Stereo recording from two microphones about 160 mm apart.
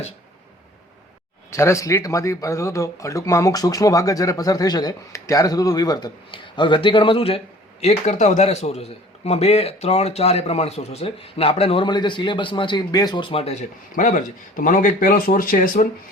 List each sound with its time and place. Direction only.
1.5 s speech: 20° left (ahead or behind); by 15.9 s 60° left (ahead or behind)